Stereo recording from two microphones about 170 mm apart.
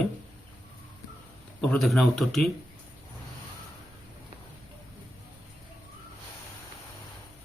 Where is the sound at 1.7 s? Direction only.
Centre (ahead or behind).